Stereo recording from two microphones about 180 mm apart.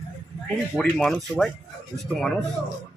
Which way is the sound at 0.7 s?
5° left (ahead or behind).